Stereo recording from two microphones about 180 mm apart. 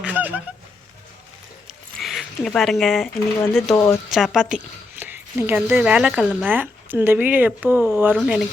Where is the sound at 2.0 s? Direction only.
Centre (ahead or behind).